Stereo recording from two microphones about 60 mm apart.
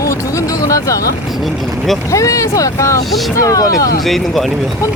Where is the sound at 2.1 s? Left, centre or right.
Left.